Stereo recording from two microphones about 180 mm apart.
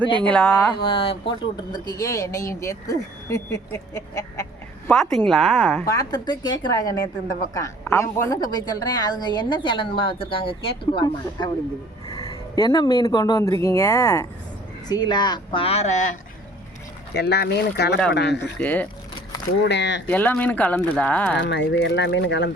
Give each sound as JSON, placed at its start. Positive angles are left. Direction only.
{"t": 0.3, "sound": "speech", "side_deg": 5}
{"t": 0.8, "sound": "speech", "side_deg": 30}
{"t": 5.1, "sound": "speech", "side_deg": 0}
{"t": 5.8, "sound": "a woman's voice", "side_deg": 20}
{"t": 17.2, "sound": "speech", "side_deg": 65}
{"t": 18.6, "sound": "speech", "side_deg": 10}
{"t": 19.6, "sound": "speech", "side_deg": 80}
{"t": 20.1, "sound": "speech", "side_deg": 10}
{"t": 21.4, "sound": "speech", "side_deg": 75}